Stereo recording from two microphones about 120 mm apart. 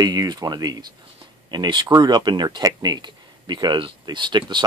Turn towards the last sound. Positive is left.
turn(degrees=-40)  # may be behind; listen again after turning